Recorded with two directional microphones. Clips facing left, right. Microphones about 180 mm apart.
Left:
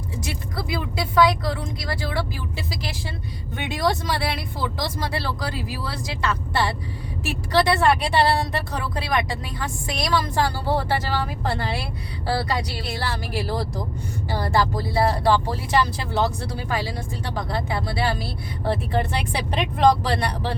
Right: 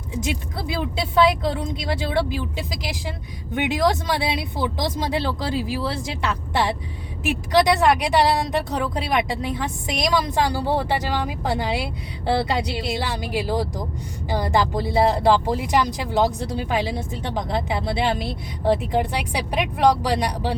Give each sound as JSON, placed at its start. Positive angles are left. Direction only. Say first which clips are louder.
{"t": 0.1, "sound": "speech", "louder": "right 6 dB", "side_deg": -20}